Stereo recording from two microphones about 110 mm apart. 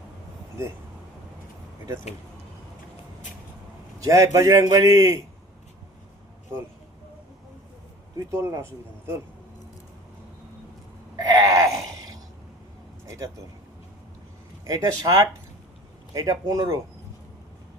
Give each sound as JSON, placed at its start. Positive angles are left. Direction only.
{"t": 4.0, "sound": "a man's voice", "side_deg": -30}
{"t": 8.2, "sound": "speech", "side_deg": -30}
{"t": 11.2, "sound": "a sound", "side_deg": -35}
{"t": 14.6, "sound": "a man's voice", "side_deg": -30}